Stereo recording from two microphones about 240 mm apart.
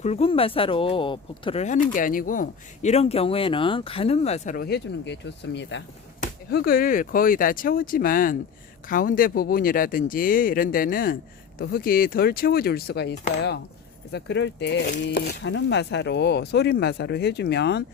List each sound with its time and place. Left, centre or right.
0.0 s speech: left